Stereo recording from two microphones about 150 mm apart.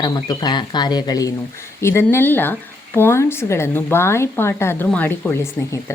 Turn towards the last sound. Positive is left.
turn(degrees=15)  # may be behind; listen again after turning